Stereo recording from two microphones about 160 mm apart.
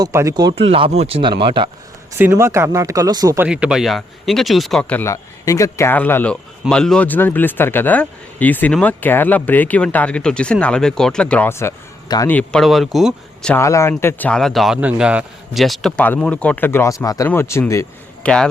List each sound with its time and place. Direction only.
0.0 s speech: 20° right (ahead or behind)
0.5 s speech: 35° right (ahead or behind)
2.1 s speech: 15° right (ahead or behind)
3.4 s speech: 5° right (ahead or behind); by 12.3 s 20° left (ahead or behind)
12.3 s speech: 5° left (ahead or behind)
13.5 s speech: 20° left (ahead or behind)
18.2 s speech: 5° left (ahead or behind)